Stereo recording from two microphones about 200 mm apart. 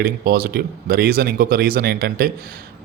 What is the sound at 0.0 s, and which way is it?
Speech, 50° right (ahead or behind).